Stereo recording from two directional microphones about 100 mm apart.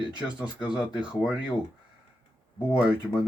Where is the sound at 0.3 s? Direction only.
10° right (ahead or behind).